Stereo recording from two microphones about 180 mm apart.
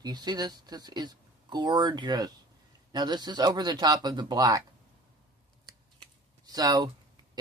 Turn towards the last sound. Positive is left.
turn(degrees=-20)  # may be behind; listen again after turning